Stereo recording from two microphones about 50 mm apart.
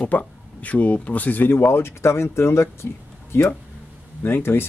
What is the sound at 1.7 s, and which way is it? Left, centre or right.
Speech, left.